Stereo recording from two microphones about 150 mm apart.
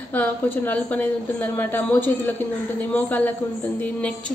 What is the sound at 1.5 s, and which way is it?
A woman's voice, 15° left (ahead or behind).